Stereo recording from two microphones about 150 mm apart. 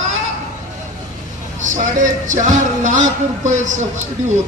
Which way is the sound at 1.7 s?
60° right (ahead or behind).